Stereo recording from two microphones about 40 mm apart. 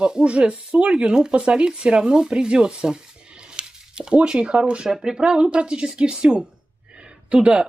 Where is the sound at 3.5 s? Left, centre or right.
Right.